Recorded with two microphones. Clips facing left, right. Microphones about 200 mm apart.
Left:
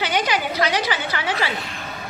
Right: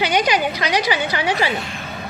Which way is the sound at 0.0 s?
15° right (ahead or behind).